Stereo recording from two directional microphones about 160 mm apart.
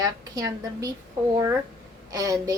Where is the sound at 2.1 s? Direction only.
20° right (ahead or behind).